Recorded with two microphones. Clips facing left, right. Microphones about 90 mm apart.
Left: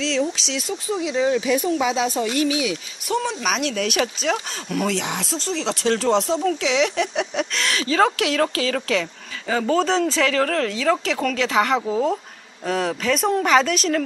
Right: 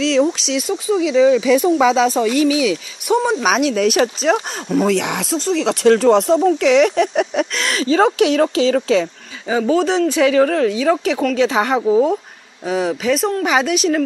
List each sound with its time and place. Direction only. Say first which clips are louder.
0.0 s speech: right 7 dB; 60° right (ahead or behind); by 2.2 s 90° right
3.3 s speech: right 8 dB; 50° right (ahead or behind)
4.8 s speech: right 7 dB; 60° right (ahead or behind); by 9.0 s 25° right (ahead or behind)
9.5 s speech: right 4 dB; 5° right (ahead or behind)
10.1 s speech: right 6 dB; 15° right (ahead or behind)
12.6 s speech: right 4 dB; 5° right (ahead or behind)